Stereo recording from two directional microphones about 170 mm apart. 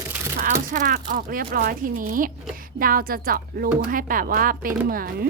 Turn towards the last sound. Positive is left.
turn(degrees=-60)  # may be behind; listen again after turning